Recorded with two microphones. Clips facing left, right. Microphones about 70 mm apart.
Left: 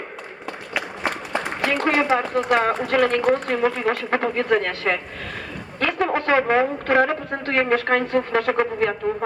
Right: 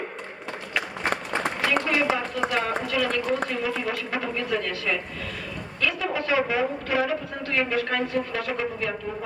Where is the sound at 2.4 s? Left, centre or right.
Left.